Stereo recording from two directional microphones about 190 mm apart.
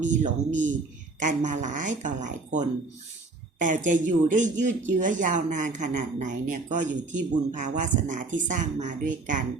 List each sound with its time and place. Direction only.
0.0 s speech: 40° right (ahead or behind)